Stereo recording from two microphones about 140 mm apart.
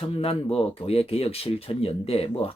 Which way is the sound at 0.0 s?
45° left (ahead or behind).